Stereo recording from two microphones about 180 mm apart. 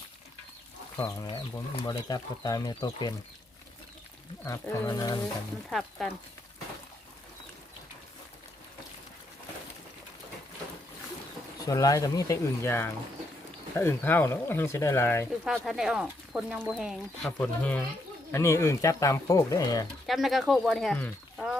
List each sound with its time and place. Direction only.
0.9 s speech: 15° left (ahead or behind)
4.4 s speech: 15° left (ahead or behind)
6.0 s speech: centre (ahead or behind)
11.6 s speech: 20° left (ahead or behind)
15.4 s speech: centre (ahead or behind); by 19.9 s 20° left (ahead or behind)
20.1 s speech: centre (ahead or behind)